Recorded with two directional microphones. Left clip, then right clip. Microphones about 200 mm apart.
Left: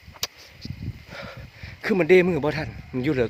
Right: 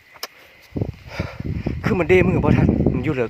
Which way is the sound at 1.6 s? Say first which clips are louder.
Right 1 dB; centre (ahead or behind).